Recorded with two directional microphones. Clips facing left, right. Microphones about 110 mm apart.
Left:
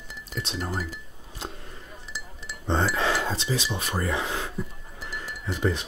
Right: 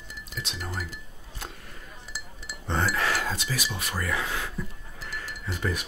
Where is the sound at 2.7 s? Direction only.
25° left (ahead or behind).